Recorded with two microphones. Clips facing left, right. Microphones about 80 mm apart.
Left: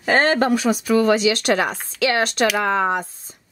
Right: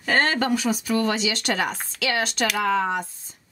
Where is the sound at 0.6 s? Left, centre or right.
Left.